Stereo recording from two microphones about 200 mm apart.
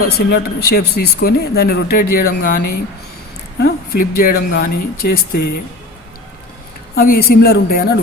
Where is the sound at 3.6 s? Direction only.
45° left (ahead or behind).